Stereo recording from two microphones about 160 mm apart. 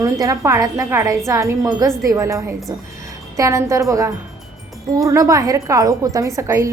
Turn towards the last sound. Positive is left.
turn(degrees=-20)  # may be behind; listen again after turning